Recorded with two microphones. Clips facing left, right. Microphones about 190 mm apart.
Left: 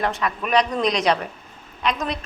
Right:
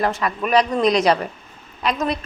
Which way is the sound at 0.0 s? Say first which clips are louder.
Right 3 dB; centre (ahead or behind).